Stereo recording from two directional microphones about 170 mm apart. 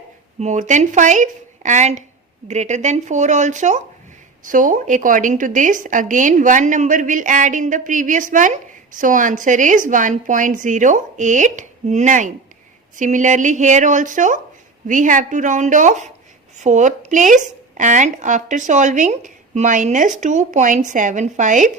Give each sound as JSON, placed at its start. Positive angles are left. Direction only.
{"t": 0.3, "sound": "speech", "side_deg": -45}